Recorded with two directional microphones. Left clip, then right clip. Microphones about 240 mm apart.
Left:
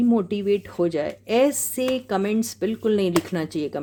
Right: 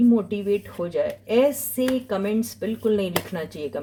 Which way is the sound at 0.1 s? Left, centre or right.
Left.